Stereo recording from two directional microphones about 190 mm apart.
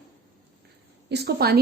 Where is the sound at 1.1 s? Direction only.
60° right (ahead or behind).